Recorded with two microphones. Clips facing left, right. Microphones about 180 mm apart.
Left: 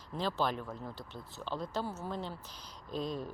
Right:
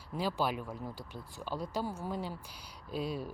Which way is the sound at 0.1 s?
10° right (ahead or behind).